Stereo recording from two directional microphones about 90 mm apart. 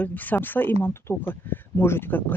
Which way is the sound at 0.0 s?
20° left (ahead or behind).